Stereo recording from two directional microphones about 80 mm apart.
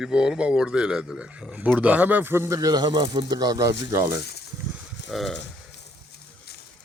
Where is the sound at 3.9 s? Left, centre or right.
Right.